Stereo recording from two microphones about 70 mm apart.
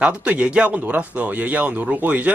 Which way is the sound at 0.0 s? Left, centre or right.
Centre.